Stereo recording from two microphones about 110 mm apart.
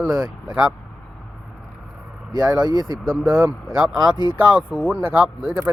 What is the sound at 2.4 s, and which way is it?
Speech, 10° right (ahead or behind).